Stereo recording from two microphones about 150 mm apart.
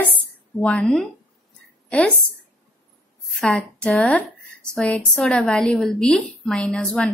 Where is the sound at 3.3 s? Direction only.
5° left (ahead or behind).